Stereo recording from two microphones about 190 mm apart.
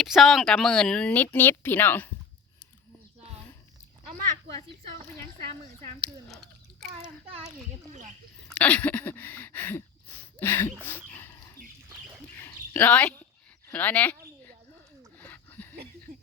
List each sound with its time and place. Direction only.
0.0 s speech: centre (ahead or behind)
6.2 s chewing: centre (ahead or behind)
7.0 s a child's voice: 30° right (ahead or behind)
8.4 s a sound: 5° left (ahead or behind)
10.4 s speech: 10° left (ahead or behind)
10.8 s dog: 10° left (ahead or behind)
12.4 s a sound: 10° left (ahead or behind)
13.7 s speech: 10° left (ahead or behind)
15.2 s a sound: 10° left (ahead or behind)